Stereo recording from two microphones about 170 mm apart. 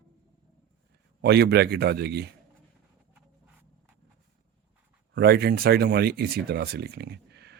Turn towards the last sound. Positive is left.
turn(degrees=-80)